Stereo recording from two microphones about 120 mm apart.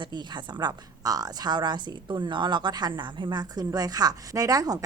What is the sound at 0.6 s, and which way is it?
Speech, 30° right (ahead or behind).